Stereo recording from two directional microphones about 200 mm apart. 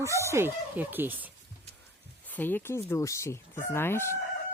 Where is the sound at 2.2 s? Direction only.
10° left (ahead or behind).